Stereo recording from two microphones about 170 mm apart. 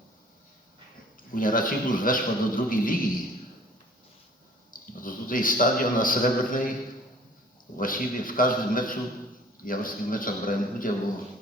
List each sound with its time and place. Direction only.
1.3 s a man's voice: 55° left (ahead or behind)
4.7 s a man's voice: 55° left (ahead or behind)
7.8 s a man's voice: 55° left (ahead or behind)